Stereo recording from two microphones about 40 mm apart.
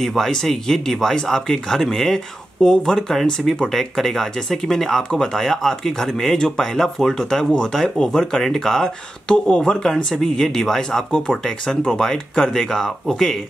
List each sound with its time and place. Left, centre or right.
0.0 s speech: centre